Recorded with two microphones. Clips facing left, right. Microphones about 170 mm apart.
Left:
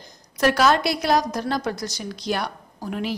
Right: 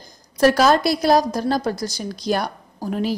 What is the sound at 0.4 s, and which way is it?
A woman's voice, 40° right (ahead or behind).